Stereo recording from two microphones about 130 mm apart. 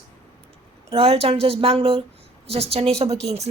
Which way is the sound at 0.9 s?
50° right (ahead or behind).